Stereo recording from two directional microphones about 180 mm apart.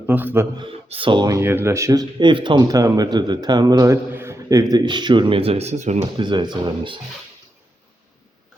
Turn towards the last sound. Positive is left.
turn(degrees=-25)  # may be behind; listen again after turning